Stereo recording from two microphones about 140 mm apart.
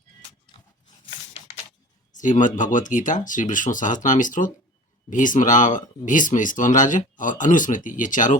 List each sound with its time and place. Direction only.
2.1 s speech: 65° left (ahead or behind)